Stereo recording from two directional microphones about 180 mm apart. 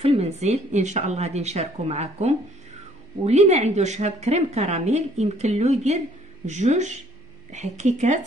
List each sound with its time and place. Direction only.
0.0 s a woman's voice: 35° right (ahead or behind)